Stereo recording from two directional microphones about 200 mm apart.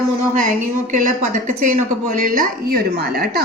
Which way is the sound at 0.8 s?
40° right (ahead or behind).